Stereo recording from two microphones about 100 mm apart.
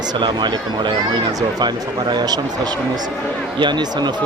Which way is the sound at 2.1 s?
45° right (ahead or behind).